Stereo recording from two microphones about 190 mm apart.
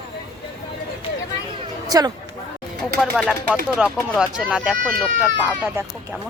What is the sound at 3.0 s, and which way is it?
Speech, 5° left (ahead or behind).